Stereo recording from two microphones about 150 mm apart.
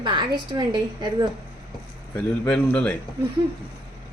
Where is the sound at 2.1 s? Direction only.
5° left (ahead or behind).